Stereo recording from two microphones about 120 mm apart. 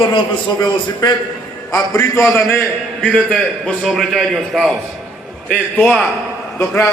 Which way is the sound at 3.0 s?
5° left (ahead or behind).